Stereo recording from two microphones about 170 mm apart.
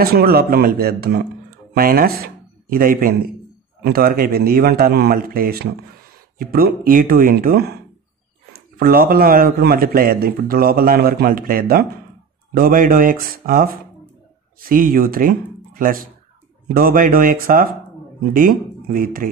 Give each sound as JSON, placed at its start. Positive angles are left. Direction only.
{"t": 0.0, "sound": "a man's voice", "side_deg": -65}
{"t": 8.7, "sound": "a man's voice", "side_deg": -60}